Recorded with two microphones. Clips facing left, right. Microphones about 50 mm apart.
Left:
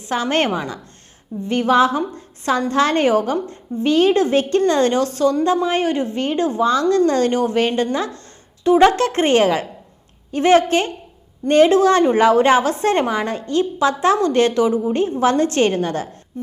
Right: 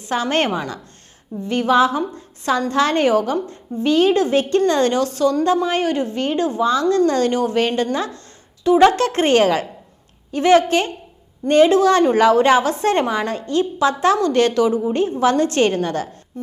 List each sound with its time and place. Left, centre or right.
0.0 s a woman's voice: left